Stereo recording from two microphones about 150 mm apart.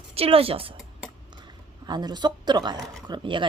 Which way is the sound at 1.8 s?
30° right (ahead or behind).